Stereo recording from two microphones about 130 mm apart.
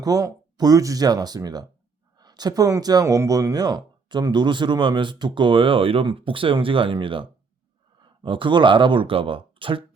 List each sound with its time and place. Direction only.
0.0 s speech: 30° right (ahead or behind)